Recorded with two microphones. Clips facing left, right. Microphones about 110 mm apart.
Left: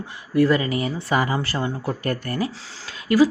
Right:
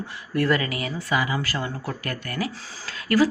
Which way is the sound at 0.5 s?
30° left (ahead or behind).